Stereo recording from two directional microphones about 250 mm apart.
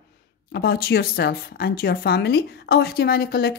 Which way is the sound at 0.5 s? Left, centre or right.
Left.